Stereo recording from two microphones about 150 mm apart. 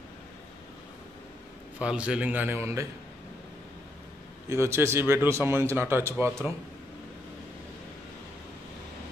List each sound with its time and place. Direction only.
1.8 s a man's voice: 5° right (ahead or behind)
4.5 s a man's voice: 15° right (ahead or behind)